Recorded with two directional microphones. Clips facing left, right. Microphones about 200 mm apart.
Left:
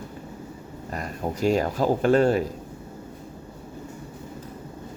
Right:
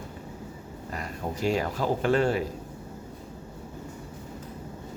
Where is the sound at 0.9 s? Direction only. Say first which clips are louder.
Left 4 dB; 45° left (ahead or behind).